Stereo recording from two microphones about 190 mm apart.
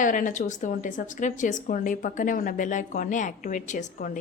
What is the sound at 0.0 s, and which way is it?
A woman's voice, 45° left (ahead or behind).